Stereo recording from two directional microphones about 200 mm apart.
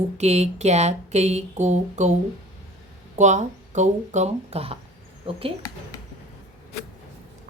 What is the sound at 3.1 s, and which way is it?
Speech, 35° right (ahead or behind).